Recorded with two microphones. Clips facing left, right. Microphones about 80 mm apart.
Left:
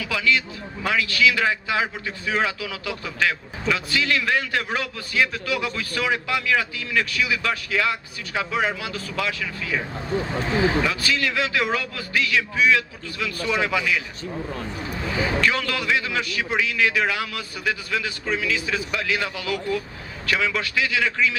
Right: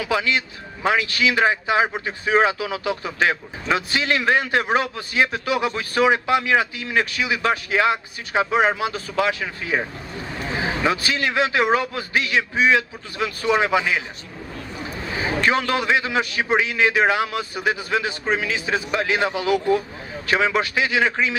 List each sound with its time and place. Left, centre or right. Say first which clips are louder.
0.0 s speech: right 1 dB; right
10.8 s speech: right 2 dB; right
15.1 s speech: right 2 dB; right